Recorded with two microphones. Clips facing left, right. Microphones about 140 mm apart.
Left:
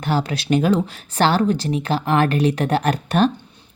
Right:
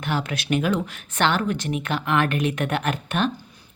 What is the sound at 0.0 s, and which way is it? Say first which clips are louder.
Speech: left 5 dB; 35° left (ahead or behind).